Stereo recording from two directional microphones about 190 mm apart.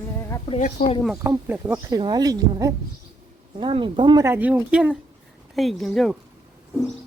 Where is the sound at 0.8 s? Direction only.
50° left (ahead or behind).